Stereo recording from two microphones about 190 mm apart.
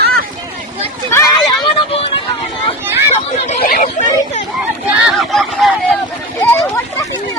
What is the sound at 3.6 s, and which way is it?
Chatter, 50° left (ahead or behind).